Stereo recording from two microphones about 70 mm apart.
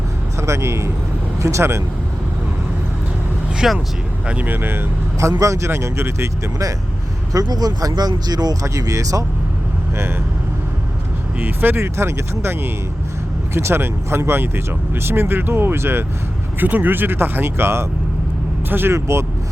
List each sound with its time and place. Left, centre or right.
0.3 s speech: right
3.6 s speech: centre
4.3 s speech: right
5.4 s speech: right
7.3 s speech: right
8.6 s speech: right
11.3 s speech: right
11.9 s speech: right
16.6 s speech: right